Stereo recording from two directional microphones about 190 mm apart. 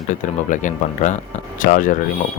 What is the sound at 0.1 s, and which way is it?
Speech, 40° left (ahead or behind).